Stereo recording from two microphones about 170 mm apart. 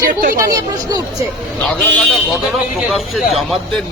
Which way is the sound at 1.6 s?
5° left (ahead or behind).